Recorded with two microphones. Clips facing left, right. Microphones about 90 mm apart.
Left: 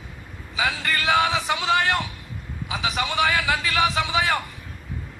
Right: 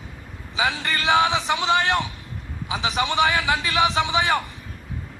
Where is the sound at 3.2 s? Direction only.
20° right (ahead or behind).